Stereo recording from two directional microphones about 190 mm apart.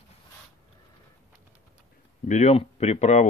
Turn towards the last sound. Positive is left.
turn(degrees=35)  # may be behind; listen again after turning